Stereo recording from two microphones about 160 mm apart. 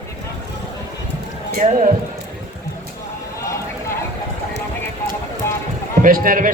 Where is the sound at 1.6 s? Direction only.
50° right (ahead or behind).